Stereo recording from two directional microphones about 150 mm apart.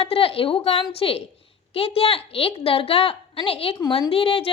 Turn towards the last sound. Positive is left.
turn(degrees=40)  # may be behind; listen again after turning